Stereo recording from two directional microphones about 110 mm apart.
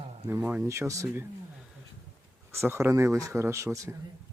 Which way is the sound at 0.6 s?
25° right (ahead or behind).